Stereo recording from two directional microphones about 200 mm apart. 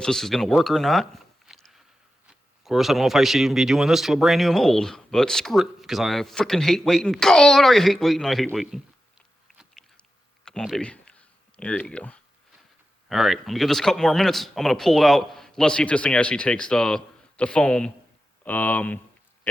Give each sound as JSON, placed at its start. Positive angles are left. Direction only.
{"t": 0.0, "sound": "speech", "side_deg": 0}
{"t": 9.5, "sound": "a sound", "side_deg": 0}
{"t": 13.1, "sound": "speech", "side_deg": 0}